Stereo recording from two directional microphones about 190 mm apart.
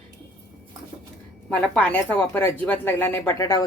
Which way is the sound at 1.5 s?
5° left (ahead or behind).